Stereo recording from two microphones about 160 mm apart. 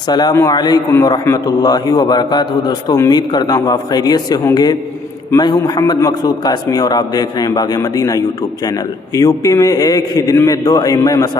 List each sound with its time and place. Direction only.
0.1 s a man's voice: 25° left (ahead or behind)